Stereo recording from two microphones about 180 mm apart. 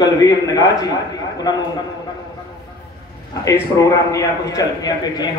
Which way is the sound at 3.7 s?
15° left (ahead or behind).